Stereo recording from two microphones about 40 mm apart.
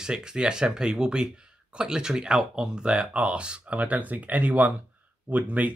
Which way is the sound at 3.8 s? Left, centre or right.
Right.